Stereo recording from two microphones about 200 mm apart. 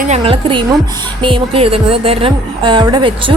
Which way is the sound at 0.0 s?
30° right (ahead or behind).